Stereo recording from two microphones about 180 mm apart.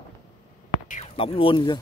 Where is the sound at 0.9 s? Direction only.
35° left (ahead or behind).